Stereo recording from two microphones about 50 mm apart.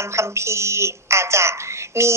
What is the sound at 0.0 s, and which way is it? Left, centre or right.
A woman's voice, right.